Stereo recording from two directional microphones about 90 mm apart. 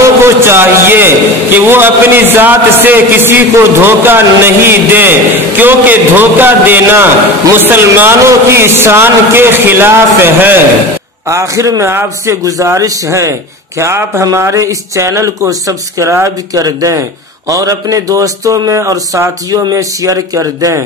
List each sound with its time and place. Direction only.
0.0 s a man's voice: 30° right (ahead or behind)